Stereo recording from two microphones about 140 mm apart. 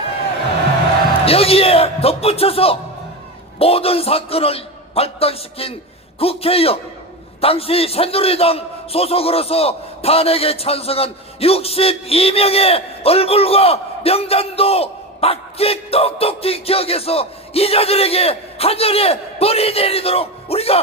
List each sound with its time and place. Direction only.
1.2 s a man's voice: 45° left (ahead or behind)